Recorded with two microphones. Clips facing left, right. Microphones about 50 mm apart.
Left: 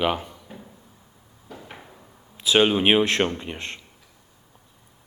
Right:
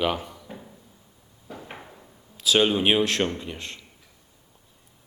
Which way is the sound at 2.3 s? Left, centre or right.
Left.